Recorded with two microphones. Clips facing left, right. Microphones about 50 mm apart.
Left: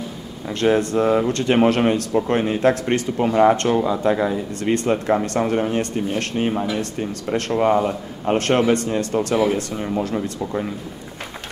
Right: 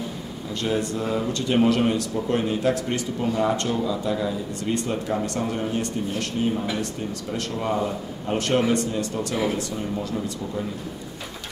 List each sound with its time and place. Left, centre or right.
0.6 s speech: left